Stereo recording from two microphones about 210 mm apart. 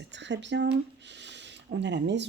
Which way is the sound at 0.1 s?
60° right (ahead or behind).